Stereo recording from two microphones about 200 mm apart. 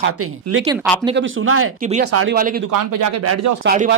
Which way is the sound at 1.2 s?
90° right.